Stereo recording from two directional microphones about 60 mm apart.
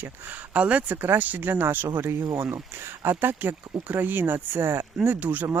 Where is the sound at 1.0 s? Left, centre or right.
Right.